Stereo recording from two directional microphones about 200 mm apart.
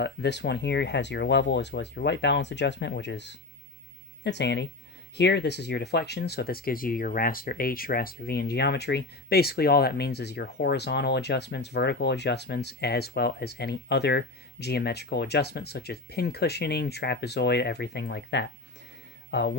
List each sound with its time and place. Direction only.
0.0 s speech: 60° left (ahead or behind)